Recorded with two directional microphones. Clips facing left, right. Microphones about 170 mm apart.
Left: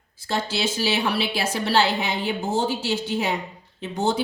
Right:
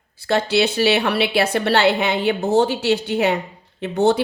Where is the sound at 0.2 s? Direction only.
65° right (ahead or behind).